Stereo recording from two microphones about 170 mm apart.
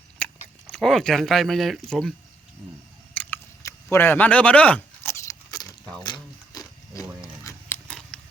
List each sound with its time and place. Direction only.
0.2 s biting: 5° left (ahead or behind)
0.7 s speech: centre (ahead or behind)
3.2 s chewing: 10° left (ahead or behind)
6.0 s a sound: 25° left (ahead or behind)